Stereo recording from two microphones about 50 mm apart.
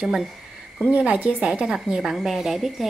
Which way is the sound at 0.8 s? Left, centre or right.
Right.